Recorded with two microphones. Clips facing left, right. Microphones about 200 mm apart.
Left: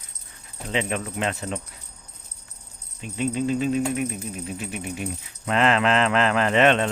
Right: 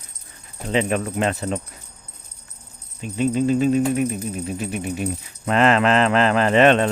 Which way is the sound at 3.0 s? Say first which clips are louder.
Right 5 dB; 40° right (ahead or behind).